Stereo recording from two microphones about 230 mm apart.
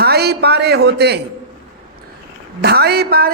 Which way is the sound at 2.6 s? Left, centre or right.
Right.